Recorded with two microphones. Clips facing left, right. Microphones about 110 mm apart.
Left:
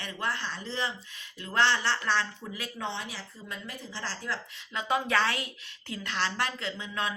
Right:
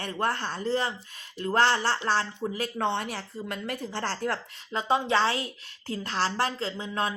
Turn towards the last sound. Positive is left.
turn(degrees=-35)  # may be behind; listen again after turning